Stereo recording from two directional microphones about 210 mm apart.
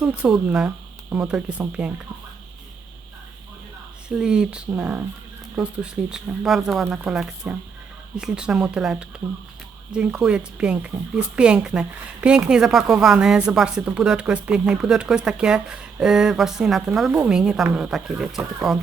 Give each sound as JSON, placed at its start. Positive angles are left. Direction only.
{"t": 0.0, "sound": "a woman's voice", "side_deg": -5}
{"t": 4.1, "sound": "a woman's voice", "side_deg": -5}